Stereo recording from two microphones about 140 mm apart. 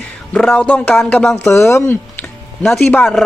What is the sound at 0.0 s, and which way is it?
Speech, 5° left (ahead or behind).